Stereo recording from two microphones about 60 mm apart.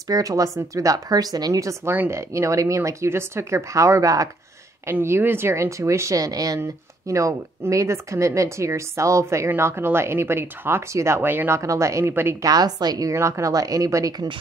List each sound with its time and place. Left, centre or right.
0.1 s a woman's voice: right
1.9 s speech: right
5.0 s speech: right
6.6 s speech: right
9.6 s speech: right
11.1 s speech: right
11.5 s speech: right
12.1 s speech: right
12.4 s a woman's voice: right
13.1 s speech: right
13.5 s a woman's voice: right